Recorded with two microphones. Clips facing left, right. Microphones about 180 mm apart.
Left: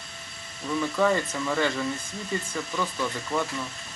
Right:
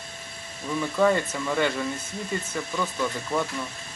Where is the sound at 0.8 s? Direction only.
Centre (ahead or behind).